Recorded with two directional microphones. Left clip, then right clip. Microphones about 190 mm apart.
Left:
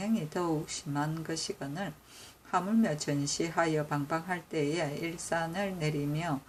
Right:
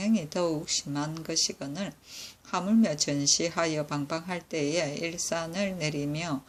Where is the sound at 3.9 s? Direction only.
15° right (ahead or behind).